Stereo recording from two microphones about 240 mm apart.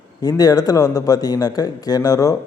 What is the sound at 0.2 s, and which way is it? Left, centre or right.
A man's voice, centre.